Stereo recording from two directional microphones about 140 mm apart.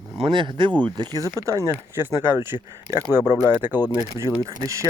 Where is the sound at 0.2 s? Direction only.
35° right (ahead or behind).